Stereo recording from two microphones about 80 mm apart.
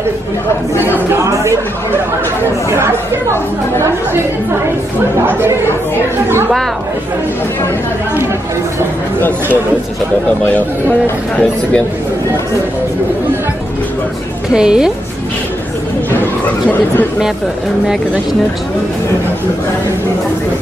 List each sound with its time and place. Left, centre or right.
1.2 s speech: right
5.2 s speech: right
10.4 s speech: left
14.5 s a woman's voice: centre